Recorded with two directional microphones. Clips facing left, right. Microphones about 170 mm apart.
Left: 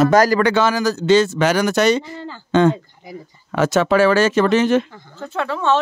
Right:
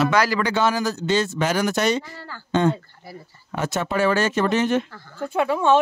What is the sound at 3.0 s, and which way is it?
Speech, 15° left (ahead or behind).